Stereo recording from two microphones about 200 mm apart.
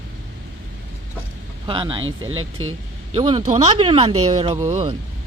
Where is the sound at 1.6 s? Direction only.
25° right (ahead or behind).